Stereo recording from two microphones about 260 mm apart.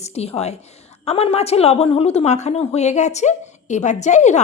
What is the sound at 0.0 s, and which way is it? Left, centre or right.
A woman's voice, left.